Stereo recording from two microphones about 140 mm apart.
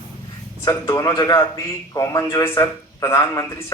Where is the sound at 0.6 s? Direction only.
25° left (ahead or behind).